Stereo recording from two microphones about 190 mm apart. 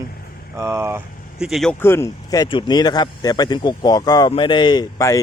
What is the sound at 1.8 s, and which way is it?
Speech, 15° left (ahead or behind).